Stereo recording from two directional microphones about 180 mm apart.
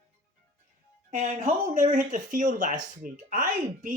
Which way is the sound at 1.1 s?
50° right (ahead or behind).